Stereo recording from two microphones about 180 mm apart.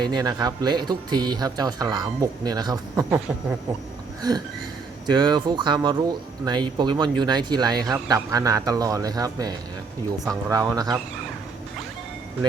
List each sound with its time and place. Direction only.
0.0 s speech: 25° right (ahead or behind)
4.2 s a sound: 20° right (ahead or behind)
5.0 s speech: 25° right (ahead or behind)